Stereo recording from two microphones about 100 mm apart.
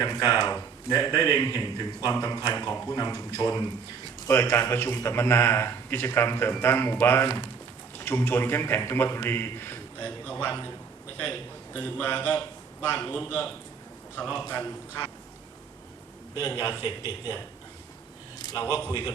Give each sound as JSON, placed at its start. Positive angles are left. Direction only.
{"t": 0.0, "sound": "a man's voice", "side_deg": 35}
{"t": 16.5, "sound": "a man's voice", "side_deg": 25}
{"t": 16.8, "sound": "a man's voice", "side_deg": 45}
{"t": 18.3, "sound": "a sound", "side_deg": 45}
{"t": 18.9, "sound": "a man's voice", "side_deg": 35}